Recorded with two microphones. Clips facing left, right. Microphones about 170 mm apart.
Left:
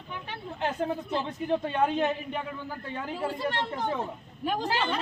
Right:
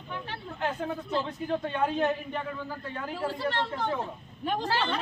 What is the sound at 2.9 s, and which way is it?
Speech, 15° left (ahead or behind).